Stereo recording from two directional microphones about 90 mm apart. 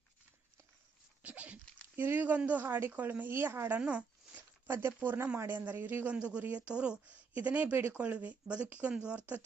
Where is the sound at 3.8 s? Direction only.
15° right (ahead or behind).